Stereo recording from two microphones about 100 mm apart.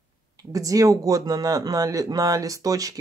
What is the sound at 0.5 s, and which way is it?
Speech, 35° right (ahead or behind).